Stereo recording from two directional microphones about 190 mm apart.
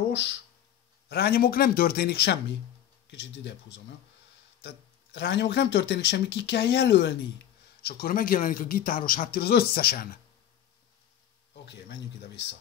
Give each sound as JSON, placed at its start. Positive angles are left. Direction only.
{"t": 1.0, "sound": "speech", "side_deg": 55}
{"t": 4.6, "sound": "speech", "side_deg": 65}
{"t": 7.8, "sound": "speech", "side_deg": 50}
{"t": 11.5, "sound": "speech", "side_deg": 65}